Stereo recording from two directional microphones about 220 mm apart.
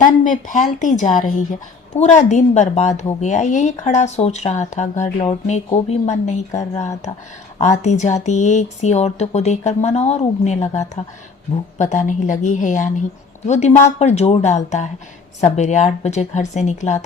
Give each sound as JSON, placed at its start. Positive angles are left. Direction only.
{"t": 0.0, "sound": "speech", "side_deg": 35}